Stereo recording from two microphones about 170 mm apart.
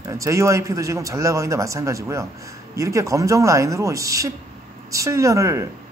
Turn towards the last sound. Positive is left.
turn(degrees=-15)  # may be behind; listen again after turning